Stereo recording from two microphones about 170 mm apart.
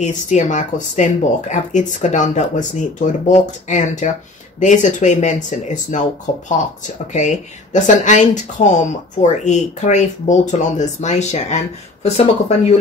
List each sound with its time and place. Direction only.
0.0 s speech: 45° left (ahead or behind)
7.1 s speech: 45° left (ahead or behind)